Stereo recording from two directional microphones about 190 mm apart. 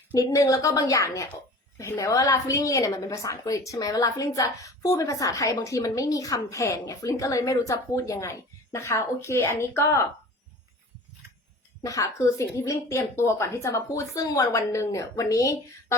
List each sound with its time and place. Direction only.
0.1 s a woman's voice: 20° left (ahead or behind)
11.8 s a woman's voice: 15° left (ahead or behind)